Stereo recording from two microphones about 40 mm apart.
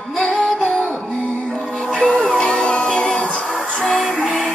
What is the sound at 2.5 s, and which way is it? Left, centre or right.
Music, left.